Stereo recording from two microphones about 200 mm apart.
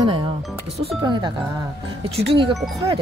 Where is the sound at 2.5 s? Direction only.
Centre (ahead or behind).